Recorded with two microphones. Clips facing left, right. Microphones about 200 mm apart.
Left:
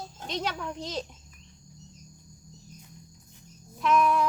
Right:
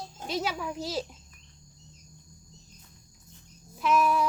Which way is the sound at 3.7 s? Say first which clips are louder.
Left 1 dB; 5° right (ahead or behind).